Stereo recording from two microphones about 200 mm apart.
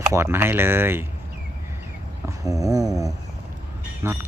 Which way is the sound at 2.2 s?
15° right (ahead or behind).